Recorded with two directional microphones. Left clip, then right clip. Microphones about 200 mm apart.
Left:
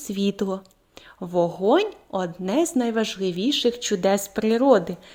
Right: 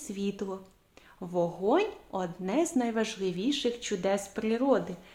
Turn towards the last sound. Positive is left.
turn(degrees=35)  # may be behind; listen again after turning